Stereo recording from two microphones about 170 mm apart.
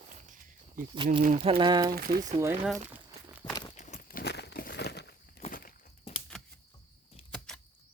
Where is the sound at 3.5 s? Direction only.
25° left (ahead or behind).